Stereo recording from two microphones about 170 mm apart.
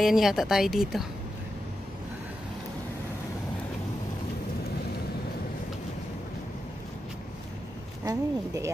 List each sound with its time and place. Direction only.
0.0 s speech: centre (ahead or behind)
8.0 s speech: 20° right (ahead or behind)